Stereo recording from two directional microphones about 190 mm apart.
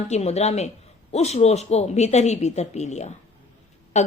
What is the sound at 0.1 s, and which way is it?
Speech, 35° left (ahead or behind).